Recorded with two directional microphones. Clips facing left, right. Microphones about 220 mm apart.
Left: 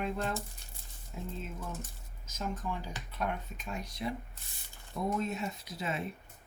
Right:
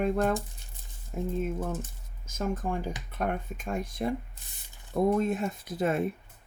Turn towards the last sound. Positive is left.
turn(degrees=-50)  # may be behind; listen again after turning